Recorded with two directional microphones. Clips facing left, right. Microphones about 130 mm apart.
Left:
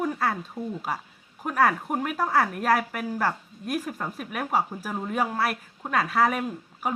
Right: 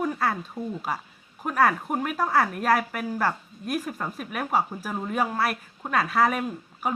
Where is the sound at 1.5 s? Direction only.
15° left (ahead or behind).